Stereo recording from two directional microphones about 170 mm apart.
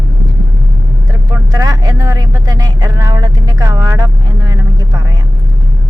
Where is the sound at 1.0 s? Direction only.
20° right (ahead or behind).